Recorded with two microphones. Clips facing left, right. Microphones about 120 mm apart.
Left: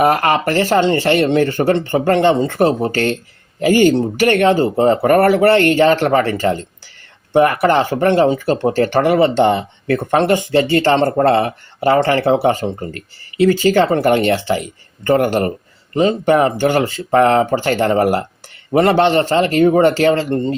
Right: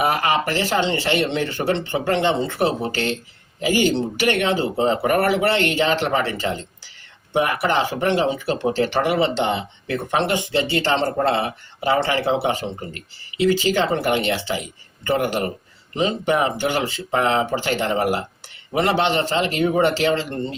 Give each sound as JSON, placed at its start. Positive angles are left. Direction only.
{"t": 0.0, "sound": "speech", "side_deg": 50}